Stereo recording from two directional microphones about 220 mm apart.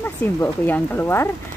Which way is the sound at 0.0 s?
10° left (ahead or behind).